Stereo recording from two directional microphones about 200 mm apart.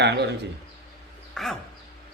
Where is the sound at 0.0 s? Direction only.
60° right (ahead or behind).